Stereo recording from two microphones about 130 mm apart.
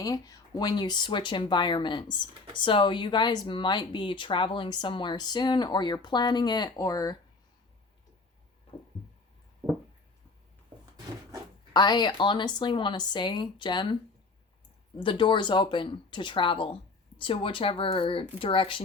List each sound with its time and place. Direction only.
0.0 s speech: 25° left (ahead or behind)
11.7 s speech: 35° left (ahead or behind)
14.9 s speech: 40° left (ahead or behind)